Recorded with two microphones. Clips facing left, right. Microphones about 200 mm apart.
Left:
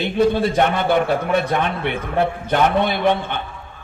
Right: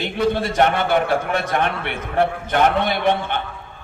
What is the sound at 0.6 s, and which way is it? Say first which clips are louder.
A man's voice: even; 55° right (ahead or behind).